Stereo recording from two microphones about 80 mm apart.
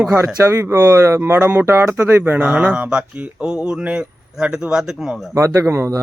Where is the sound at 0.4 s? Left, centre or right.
Right; by 5.2 s centre.